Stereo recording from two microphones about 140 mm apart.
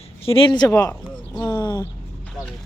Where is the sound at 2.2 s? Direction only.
5° left (ahead or behind).